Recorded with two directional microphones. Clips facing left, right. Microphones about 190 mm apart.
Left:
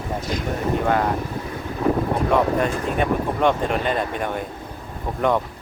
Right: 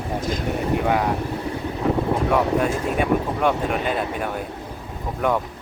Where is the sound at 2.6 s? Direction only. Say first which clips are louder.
Even; 10° right (ahead or behind).